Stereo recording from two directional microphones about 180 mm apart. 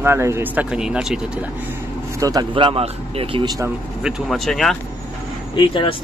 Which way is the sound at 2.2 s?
20° right (ahead or behind).